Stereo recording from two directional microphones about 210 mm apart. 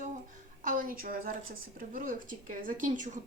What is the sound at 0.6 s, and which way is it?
A woman's voice, 40° right (ahead or behind).